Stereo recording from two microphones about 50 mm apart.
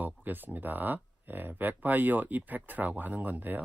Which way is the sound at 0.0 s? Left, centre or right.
Right.